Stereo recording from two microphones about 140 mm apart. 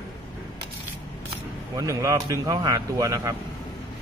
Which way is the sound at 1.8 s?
25° right (ahead or behind).